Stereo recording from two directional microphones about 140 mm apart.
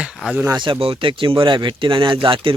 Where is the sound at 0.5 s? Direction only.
35° right (ahead or behind).